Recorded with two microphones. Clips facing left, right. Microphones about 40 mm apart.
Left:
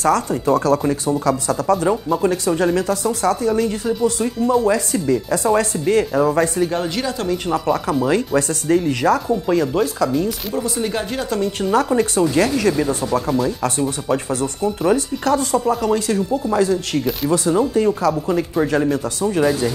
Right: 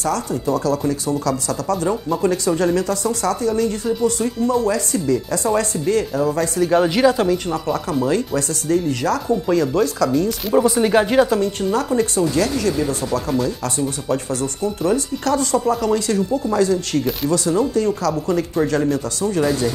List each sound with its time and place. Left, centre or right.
0.0 s speech: left
1.2 s speech: left
3.8 s speech: centre
4.6 s speech: left
6.7 s speech: centre
7.2 s speech: centre
8.4 s speech: left
9.3 s speech: centre
10.8 s speech: centre
11.3 s speech: centre
12.4 s speech: left
14.0 s speech: centre
15.5 s speech: centre
17.3 s speech: centre